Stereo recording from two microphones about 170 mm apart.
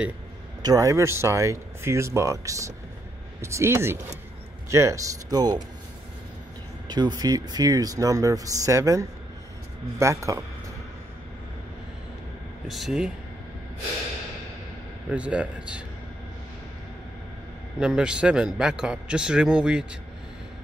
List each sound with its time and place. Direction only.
0.6 s speech: 20° right (ahead or behind)
6.9 s speech: 25° right (ahead or behind)
12.6 s a man's voice: centre (ahead or behind)
15.0 s speech: 5° right (ahead or behind)
17.7 s a man's voice: 5° right (ahead or behind)